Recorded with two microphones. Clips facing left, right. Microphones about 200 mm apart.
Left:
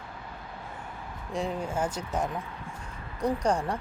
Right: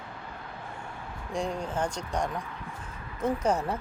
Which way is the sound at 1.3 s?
Centre (ahead or behind).